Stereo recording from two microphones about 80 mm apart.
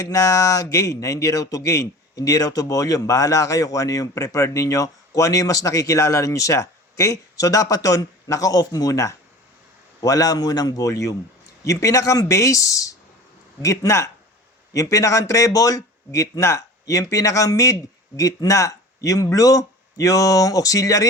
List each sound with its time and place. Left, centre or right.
0.1 s speech: left